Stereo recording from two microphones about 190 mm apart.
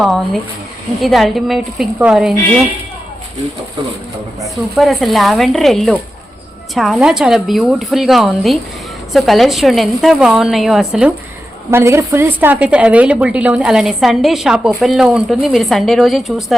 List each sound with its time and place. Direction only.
1.0 s a woman's voice: centre (ahead or behind)
4.4 s a woman's voice: centre (ahead or behind)
11.7 s a woman's voice: 15° right (ahead or behind)